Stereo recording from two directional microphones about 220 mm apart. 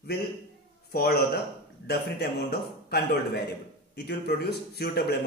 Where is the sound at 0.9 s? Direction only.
45° left (ahead or behind).